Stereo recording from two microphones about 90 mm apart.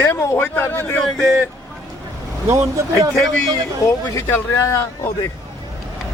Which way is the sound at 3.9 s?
30° left (ahead or behind).